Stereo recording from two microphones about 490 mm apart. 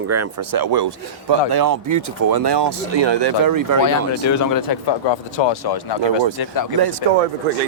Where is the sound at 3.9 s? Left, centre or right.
Left.